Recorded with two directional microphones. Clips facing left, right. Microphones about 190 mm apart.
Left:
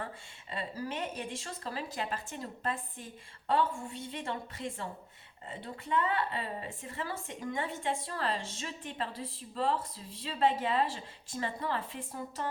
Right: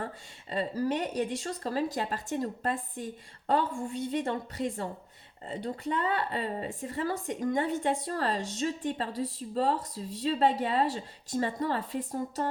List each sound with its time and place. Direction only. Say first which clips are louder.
0.5 s a woman's voice: right 8 dB; 40° right (ahead or behind)